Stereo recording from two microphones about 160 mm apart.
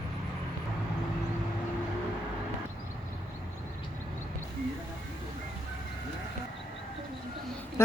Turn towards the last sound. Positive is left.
turn(degrees=15)  # may be behind; listen again after turning